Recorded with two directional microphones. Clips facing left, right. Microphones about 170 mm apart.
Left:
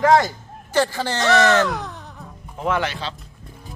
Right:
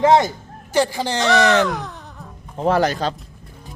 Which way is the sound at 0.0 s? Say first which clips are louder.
Right 2 dB; 20° right (ahead or behind).